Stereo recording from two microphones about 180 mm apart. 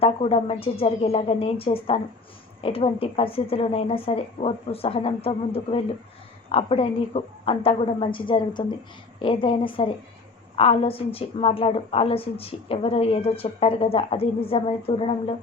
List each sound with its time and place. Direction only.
0.0 s a woman's voice: 30° left (ahead or behind)